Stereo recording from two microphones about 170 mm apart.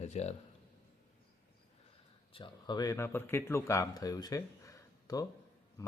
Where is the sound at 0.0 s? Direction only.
40° left (ahead or behind).